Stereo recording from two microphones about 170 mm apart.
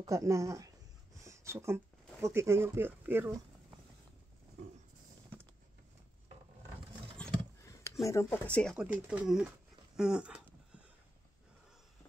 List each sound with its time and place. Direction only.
0.0 s speech: 20° right (ahead or behind)
1.2 s a sound: 15° right (ahead or behind)
2.2 s speech: 15° right (ahead or behind)
7.2 s a sound: 5° left (ahead or behind)
7.6 s speech: 20° left (ahead or behind)
8.7 s speech: 5° right (ahead or behind)